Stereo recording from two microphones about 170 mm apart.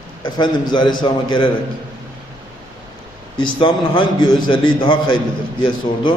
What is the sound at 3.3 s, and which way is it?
A man's voice, 30° left (ahead or behind).